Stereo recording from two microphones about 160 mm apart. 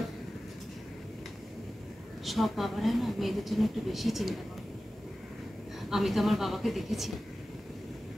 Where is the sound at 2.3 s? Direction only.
Centre (ahead or behind).